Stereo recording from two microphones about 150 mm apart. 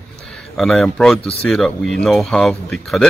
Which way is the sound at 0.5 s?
5° left (ahead or behind).